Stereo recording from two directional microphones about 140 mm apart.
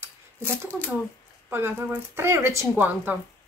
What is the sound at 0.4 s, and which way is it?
Speech, 10° left (ahead or behind).